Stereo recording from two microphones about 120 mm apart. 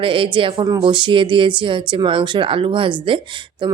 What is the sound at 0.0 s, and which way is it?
A woman's voice, 45° right (ahead or behind).